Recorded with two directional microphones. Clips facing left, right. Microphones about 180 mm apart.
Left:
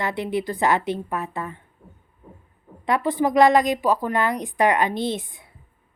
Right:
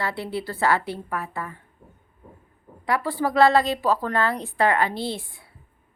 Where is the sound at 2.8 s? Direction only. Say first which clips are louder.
Left 3 dB; 20° left (ahead or behind).